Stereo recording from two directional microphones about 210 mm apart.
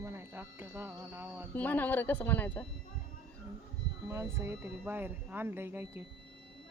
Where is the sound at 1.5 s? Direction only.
10° left (ahead or behind).